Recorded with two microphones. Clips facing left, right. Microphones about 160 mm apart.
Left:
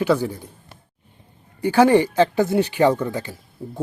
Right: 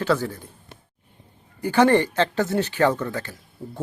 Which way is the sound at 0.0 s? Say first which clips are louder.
Left 3 dB; 15° left (ahead or behind).